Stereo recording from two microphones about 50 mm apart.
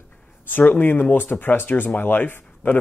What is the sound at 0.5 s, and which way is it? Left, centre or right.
Speech, left.